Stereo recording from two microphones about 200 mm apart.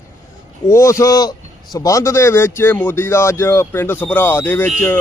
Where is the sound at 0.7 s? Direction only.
15° left (ahead or behind).